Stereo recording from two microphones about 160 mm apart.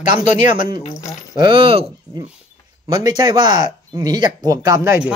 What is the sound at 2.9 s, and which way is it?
Speech, 25° right (ahead or behind).